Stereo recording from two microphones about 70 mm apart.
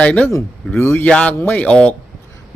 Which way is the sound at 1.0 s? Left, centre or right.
Centre.